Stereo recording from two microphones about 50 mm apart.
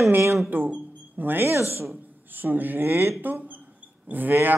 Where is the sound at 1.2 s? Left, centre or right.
Right.